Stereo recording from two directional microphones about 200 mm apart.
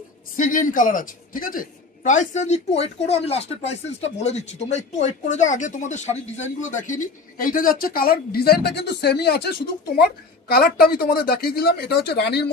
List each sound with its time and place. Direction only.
0.4 s a man's voice: 40° left (ahead or behind)